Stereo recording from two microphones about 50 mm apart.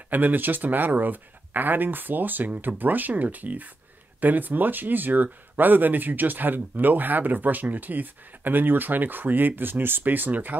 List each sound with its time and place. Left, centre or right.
0.1 s speech: right